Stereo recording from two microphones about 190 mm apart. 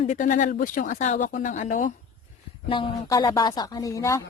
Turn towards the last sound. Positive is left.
turn(degrees=15)  # may be behind; listen again after turning